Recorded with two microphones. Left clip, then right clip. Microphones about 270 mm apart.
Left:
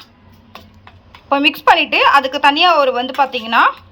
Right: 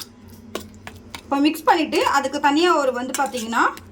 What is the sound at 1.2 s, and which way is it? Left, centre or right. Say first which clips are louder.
A woman's voice: left 6 dB; centre.